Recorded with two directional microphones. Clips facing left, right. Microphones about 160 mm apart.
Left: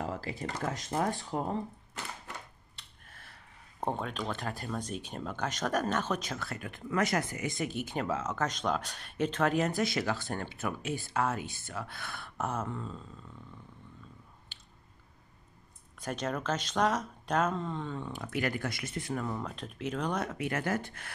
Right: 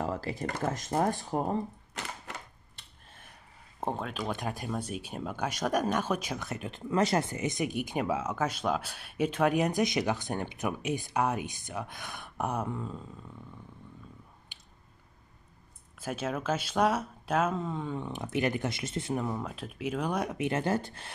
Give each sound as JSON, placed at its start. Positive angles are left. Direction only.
{"t": 0.0, "sound": "a sound", "side_deg": -40}
{"t": 0.5, "sound": "speech", "side_deg": -50}
{"t": 2.0, "sound": "a sound", "side_deg": -90}
{"t": 3.1, "sound": "finger snapping", "side_deg": -20}
{"t": 3.8, "sound": "speech", "side_deg": 0}
{"t": 14.5, "sound": "squish", "side_deg": -15}
{"t": 16.0, "sound": "speech", "side_deg": -5}
{"t": 19.2, "sound": "speech", "side_deg": -10}